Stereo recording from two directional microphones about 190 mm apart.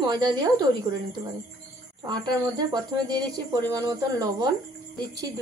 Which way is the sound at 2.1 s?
20° right (ahead or behind).